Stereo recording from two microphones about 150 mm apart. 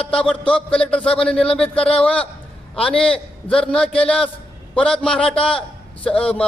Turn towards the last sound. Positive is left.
turn(degrees=5)  # may be behind; listen again after turning